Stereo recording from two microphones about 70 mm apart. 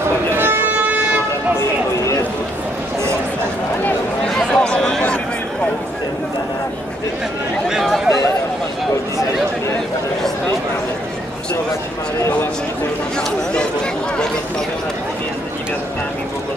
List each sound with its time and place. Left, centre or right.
0.4 s music: right
4.4 s a sound: centre
7.7 s chatter: centre